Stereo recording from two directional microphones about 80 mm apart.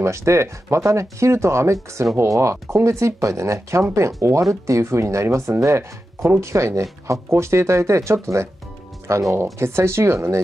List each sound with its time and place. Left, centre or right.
0.0 s speech: right